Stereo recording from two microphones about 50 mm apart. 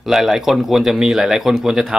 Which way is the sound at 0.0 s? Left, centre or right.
Centre.